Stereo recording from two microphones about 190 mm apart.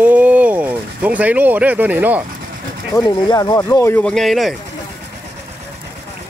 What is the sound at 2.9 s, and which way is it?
Speech, 20° left (ahead or behind).